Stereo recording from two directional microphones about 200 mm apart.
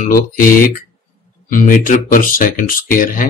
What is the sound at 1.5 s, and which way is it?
Speech, 40° left (ahead or behind).